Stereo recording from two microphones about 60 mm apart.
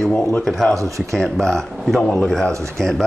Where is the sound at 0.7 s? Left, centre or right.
Right.